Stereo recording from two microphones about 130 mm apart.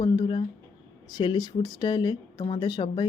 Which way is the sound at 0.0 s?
35° left (ahead or behind).